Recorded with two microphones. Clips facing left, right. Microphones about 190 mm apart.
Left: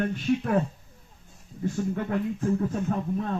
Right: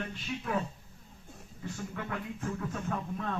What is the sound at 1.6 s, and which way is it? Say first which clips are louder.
Speech: left 11 dB; 40° left (ahead or behind).